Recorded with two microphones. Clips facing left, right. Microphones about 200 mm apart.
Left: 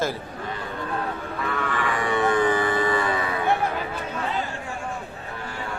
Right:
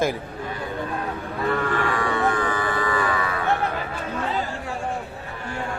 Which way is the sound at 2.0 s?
20° left (ahead or behind).